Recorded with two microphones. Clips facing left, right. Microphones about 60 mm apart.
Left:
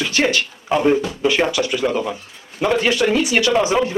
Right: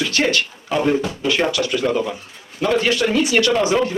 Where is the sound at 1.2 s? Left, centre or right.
Centre.